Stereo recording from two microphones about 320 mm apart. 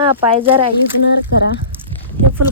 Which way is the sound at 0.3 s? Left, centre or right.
Centre.